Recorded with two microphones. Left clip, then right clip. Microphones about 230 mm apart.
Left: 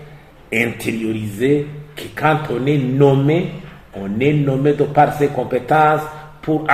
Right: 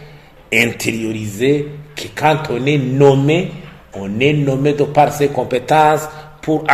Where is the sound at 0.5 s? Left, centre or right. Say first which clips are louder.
Right 4 dB; right.